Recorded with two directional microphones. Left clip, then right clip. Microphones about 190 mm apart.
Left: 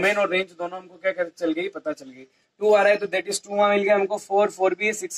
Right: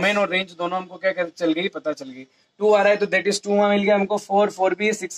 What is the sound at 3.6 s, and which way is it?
Speech, 20° right (ahead or behind).